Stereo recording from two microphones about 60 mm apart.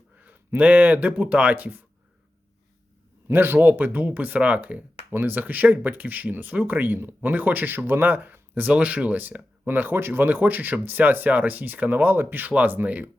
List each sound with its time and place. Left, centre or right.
0.2 s speech: right
3.2 s speech: right
5.1 s speech: right